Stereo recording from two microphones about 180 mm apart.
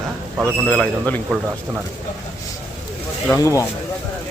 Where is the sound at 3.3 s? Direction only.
15° left (ahead or behind).